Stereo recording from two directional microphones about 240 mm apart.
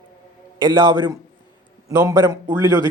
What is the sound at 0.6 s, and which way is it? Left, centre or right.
A man's voice, centre.